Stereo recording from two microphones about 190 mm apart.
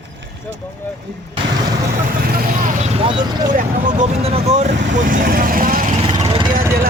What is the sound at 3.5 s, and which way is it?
Speech, 40° right (ahead or behind).